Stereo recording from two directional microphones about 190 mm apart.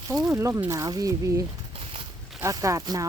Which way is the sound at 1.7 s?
30° right (ahead or behind).